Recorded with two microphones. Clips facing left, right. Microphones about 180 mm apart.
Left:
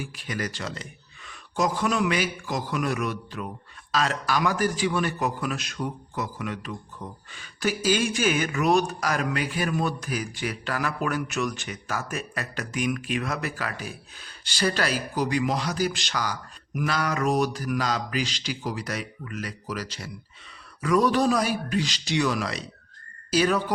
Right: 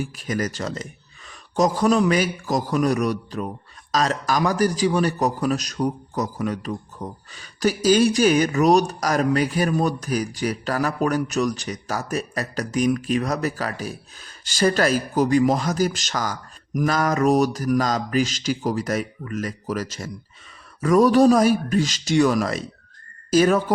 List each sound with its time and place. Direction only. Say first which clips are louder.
0.0 s a man's voice: right 6 dB; 45° right (ahead or behind)